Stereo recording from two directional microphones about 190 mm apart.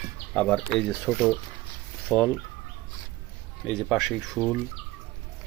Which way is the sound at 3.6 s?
5° left (ahead or behind).